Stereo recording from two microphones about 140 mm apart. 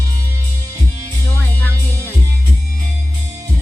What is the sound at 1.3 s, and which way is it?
Music, 15° left (ahead or behind).